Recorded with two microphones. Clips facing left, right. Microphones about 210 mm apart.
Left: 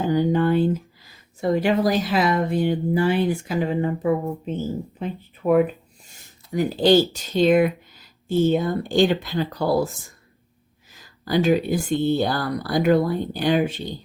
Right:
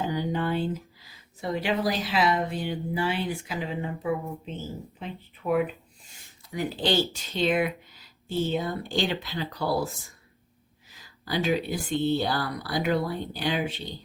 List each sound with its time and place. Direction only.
0.1 s speech: 50° left (ahead or behind)